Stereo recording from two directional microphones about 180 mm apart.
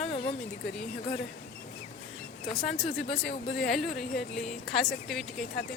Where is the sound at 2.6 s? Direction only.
Centre (ahead or behind).